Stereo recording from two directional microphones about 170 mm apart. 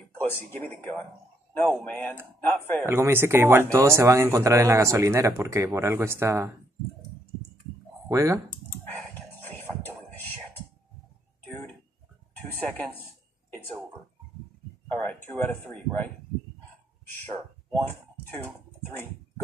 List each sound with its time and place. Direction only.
0.3 s speech: 10° left (ahead or behind)
2.9 s speech: 15° right (ahead or behind)
8.1 s speech: 20° right (ahead or behind)
10.1 s whispering: 10° left (ahead or behind)
12.4 s speech: 10° left (ahead or behind)
13.5 s a sound: 10° left (ahead or behind)
14.9 s speech: 15° left (ahead or behind)